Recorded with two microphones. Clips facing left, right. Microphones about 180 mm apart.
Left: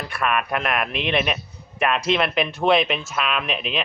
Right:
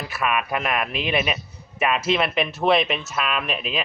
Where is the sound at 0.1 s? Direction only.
5° right (ahead or behind).